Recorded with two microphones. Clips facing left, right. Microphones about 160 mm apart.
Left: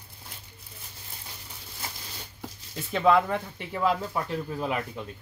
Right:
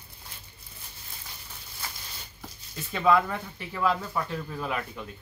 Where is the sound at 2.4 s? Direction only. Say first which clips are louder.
Left 3 dB; 20° left (ahead or behind).